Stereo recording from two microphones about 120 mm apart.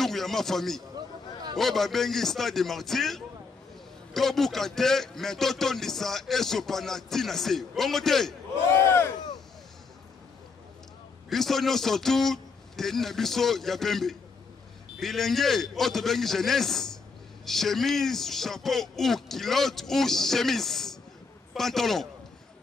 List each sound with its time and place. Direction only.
0.0 s a man's voice: centre (ahead or behind)
8.7 s speech: 20° left (ahead or behind)
11.2 s a man's voice: centre (ahead or behind)